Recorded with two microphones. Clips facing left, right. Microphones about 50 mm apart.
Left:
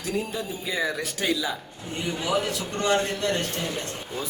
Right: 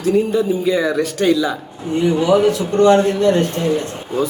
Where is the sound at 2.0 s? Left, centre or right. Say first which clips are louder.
Right 13 dB; centre.